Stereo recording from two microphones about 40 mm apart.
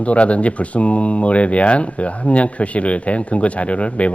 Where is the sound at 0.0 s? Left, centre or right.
Left.